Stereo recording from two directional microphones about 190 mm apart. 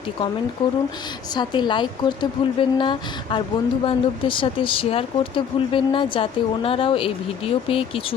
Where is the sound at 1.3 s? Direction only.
25° left (ahead or behind).